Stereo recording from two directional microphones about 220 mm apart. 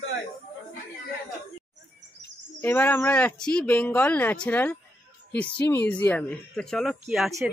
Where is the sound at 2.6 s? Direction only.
10° left (ahead or behind).